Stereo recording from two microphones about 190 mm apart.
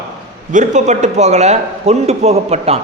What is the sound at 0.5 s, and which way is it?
A man's voice, 40° right (ahead or behind).